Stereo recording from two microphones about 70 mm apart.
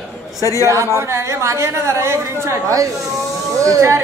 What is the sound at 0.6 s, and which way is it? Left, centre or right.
A woman's voice, right.